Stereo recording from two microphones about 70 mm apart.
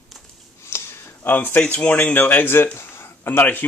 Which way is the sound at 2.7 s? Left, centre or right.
Left.